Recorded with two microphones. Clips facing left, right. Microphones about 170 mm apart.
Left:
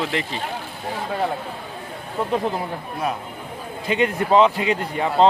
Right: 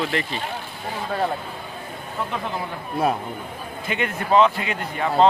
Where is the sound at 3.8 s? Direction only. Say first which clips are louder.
Left 4 dB; 30° left (ahead or behind).